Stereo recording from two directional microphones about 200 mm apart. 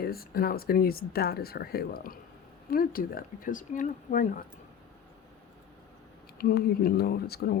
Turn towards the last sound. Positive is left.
turn(degrees=50)  # may be behind; listen again after turning